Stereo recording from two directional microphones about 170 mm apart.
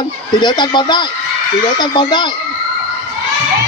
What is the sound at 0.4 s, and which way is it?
Speech, 25° left (ahead or behind).